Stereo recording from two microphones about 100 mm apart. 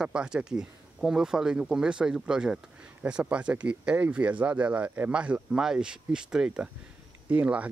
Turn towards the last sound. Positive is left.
turn(degrees=-15)  # may be behind; listen again after turning